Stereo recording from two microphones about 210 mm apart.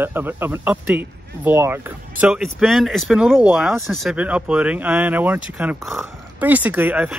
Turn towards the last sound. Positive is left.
turn(degrees=-5)  # may be behind; listen again after turning